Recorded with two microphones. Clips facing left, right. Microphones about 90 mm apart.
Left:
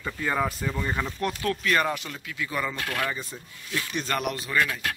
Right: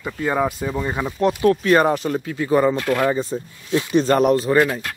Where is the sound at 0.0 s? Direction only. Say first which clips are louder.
Right 6 dB; 15° right (ahead or behind).